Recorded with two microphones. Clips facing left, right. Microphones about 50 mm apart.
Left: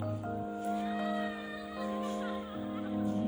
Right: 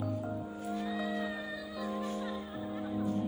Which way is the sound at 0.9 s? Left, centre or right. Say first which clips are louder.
Left 1 dB; left.